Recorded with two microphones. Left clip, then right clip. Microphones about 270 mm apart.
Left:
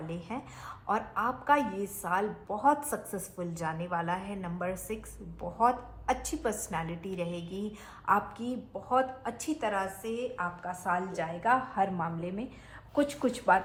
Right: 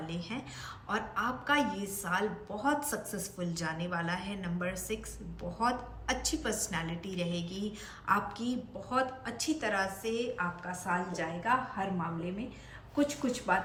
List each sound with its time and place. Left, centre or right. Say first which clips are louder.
0.9 s a woman's voice: left 3 dB; centre
8.4 s a woman's voice: even; centre